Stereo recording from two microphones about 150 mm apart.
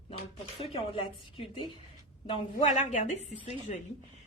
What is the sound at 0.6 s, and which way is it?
Speech, 40° left (ahead or behind).